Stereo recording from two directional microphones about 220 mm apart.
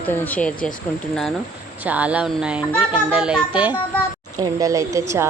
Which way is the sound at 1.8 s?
5° right (ahead or behind).